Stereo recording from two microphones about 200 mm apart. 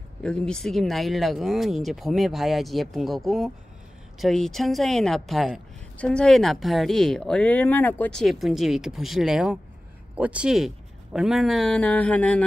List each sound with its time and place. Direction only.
0.2 s a woman's voice: 5° left (ahead or behind)